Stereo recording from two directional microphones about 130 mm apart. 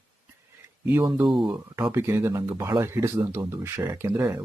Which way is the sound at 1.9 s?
20° right (ahead or behind).